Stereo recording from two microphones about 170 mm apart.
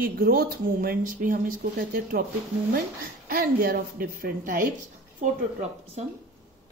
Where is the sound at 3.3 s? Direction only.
60° right (ahead or behind).